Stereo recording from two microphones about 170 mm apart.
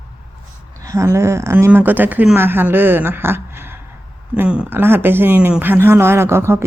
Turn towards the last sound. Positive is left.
turn(degrees=-15)  # may be behind; listen again after turning